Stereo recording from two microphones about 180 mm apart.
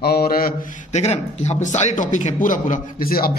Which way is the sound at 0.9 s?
40° left (ahead or behind).